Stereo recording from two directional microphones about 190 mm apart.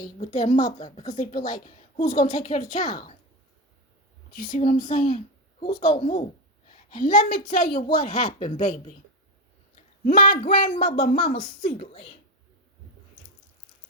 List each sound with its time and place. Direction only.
0.3 s speech: 40° left (ahead or behind)
0.9 s speech: 25° left (ahead or behind)
1.1 s speech: 40° left (ahead or behind)
1.4 s speech: 20° left (ahead or behind); by 2.8 s 45° left (ahead or behind)
2.8 s speech: 20° left (ahead or behind)
4.4 s speech: 45° left (ahead or behind)
5.0 s speech: 30° left (ahead or behind)
6.7 s a woman's voice: 45° left (ahead or behind)
8.2 s speech: 25° left (ahead or behind)
11.3 s speech: 25° left (ahead or behind)